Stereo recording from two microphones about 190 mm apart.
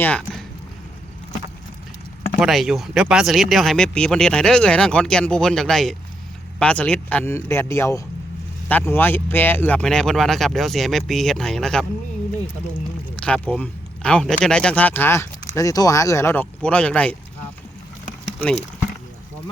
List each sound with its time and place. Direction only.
0.0 s speech: 5° left (ahead or behind)
2.4 s speech: centre (ahead or behind)
13.1 s speech: 5° left (ahead or behind)